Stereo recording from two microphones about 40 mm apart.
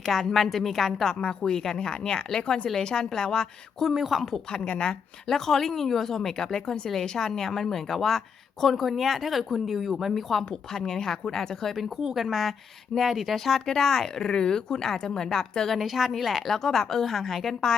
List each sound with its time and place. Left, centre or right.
0.0 s speech: centre
1.2 s speech: left
4.1 s speech: centre
4.5 s speech: left
5.3 s speech: centre
12.0 s speech: centre
15.8 s speech: centre